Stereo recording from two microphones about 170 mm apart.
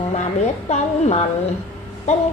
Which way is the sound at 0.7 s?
40° left (ahead or behind).